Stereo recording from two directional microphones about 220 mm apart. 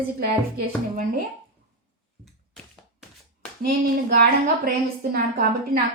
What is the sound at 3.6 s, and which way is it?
A woman's voice, 40° right (ahead or behind).